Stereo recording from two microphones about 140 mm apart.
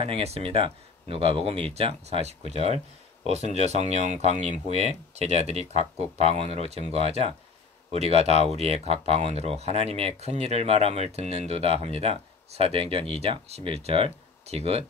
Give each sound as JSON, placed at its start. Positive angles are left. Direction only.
{"t": 0.0, "sound": "speech", "side_deg": -45}